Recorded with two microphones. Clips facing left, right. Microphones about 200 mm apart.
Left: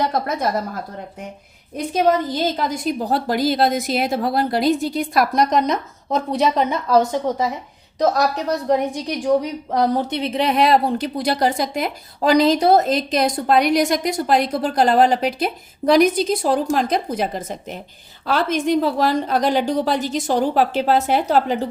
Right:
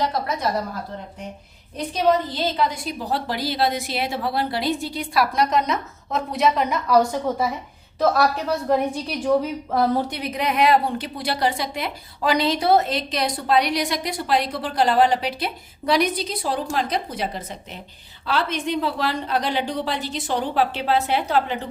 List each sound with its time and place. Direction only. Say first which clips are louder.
0.0 s a woman's voice: left 3 dB; 50° left (ahead or behind)
1.7 s a woman's voice: left 2 dB; 45° left (ahead or behind)